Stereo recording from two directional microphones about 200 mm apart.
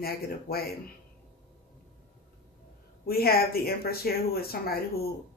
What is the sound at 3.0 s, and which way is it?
Speech, 50° left (ahead or behind).